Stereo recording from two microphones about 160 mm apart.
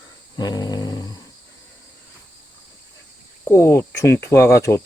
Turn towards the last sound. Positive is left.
turn(degrees=20)  # may be behind; listen again after turning